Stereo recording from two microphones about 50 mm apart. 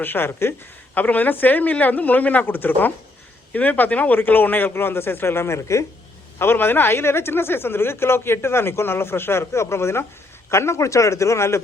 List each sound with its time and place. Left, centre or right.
0.0 s speech: left
0.9 s speech: left
5.5 s speech: left
6.4 s a man's voice: left